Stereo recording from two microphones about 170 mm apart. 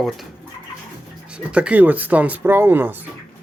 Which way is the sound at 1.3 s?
5° right (ahead or behind).